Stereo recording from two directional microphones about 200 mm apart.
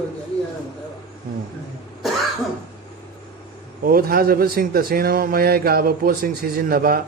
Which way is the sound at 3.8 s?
45° right (ahead or behind).